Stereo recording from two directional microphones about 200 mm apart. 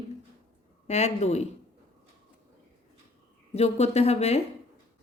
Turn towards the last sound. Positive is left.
turn(degrees=35)  # may be behind; listen again after turning